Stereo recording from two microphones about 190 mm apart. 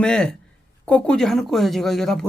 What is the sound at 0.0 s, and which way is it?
Speech, 5° left (ahead or behind).